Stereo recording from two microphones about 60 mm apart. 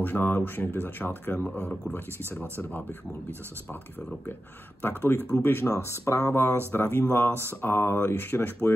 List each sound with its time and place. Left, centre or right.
0.0 s speech: left
1.4 s speech: left
4.8 s speech: left